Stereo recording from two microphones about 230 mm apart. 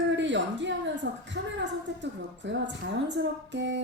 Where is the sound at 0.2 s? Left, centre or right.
Right.